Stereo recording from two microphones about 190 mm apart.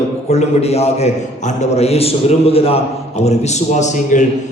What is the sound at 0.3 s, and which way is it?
A man's voice, 35° left (ahead or behind).